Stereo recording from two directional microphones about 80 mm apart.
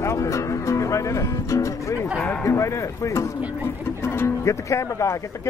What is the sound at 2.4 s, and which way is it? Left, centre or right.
Speech, left.